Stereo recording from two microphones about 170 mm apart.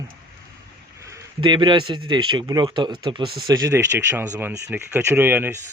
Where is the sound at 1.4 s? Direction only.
25° right (ahead or behind); by 5.6 s 10° right (ahead or behind).